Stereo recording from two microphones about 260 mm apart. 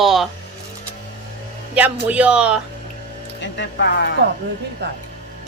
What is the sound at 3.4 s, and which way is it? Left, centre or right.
Speech, left.